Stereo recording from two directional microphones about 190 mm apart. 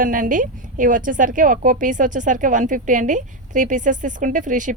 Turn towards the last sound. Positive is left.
turn(degrees=-40)  # may be behind; listen again after turning